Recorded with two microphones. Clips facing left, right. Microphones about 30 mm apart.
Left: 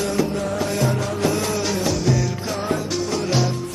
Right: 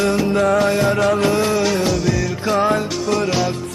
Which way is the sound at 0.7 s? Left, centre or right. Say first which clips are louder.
Right 5 dB; right.